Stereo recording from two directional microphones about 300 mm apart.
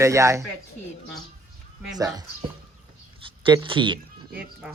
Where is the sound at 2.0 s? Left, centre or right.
Centre.